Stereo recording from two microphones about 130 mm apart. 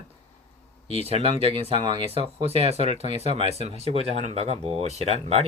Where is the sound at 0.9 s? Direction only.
50° right (ahead or behind).